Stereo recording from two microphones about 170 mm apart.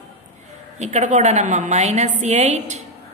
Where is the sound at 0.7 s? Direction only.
45° right (ahead or behind).